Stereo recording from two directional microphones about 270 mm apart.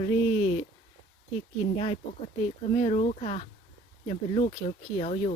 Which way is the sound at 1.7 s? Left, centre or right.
Left.